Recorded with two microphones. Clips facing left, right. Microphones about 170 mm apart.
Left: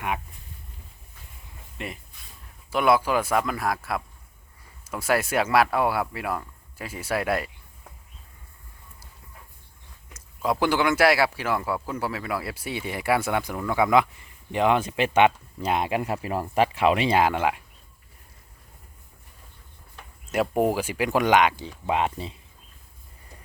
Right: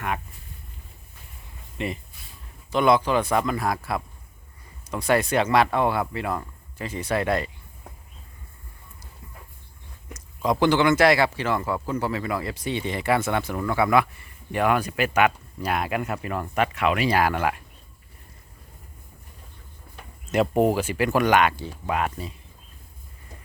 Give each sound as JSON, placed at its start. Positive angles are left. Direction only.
{"t": 1.8, "sound": "speech", "side_deg": 0}
{"t": 10.2, "sound": "speech", "side_deg": 5}
{"t": 20.3, "sound": "speech", "side_deg": 5}